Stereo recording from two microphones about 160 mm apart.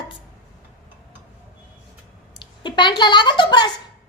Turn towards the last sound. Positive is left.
turn(degrees=30)  # may be behind; listen again after turning